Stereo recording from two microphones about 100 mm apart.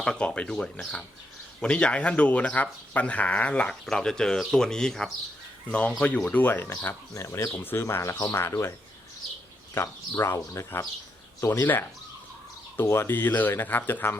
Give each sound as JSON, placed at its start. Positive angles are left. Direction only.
{"t": 0.0, "sound": "speech", "side_deg": 10}
{"t": 10.2, "sound": "speech", "side_deg": 30}
{"t": 12.7, "sound": "speech", "side_deg": 25}